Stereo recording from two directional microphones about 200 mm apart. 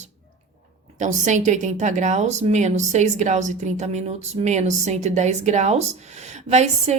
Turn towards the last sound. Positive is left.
turn(degrees=-35)  # may be behind; listen again after turning